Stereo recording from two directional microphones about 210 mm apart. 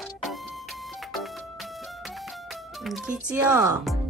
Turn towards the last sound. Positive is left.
turn(degrees=-5)  # may be behind; listen again after turning